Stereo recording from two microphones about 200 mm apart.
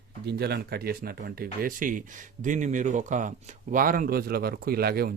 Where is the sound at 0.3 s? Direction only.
55° right (ahead or behind).